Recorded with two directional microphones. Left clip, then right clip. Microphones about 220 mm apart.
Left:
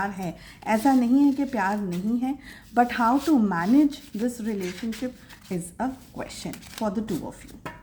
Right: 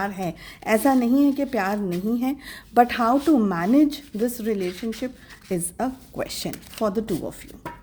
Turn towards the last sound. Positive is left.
turn(degrees=-45)  # may be behind; listen again after turning